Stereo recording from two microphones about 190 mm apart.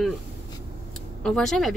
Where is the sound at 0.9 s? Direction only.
Centre (ahead or behind).